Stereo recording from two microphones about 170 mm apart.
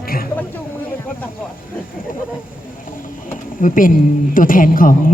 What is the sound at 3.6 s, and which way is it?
A woman's voice, 50° left (ahead or behind).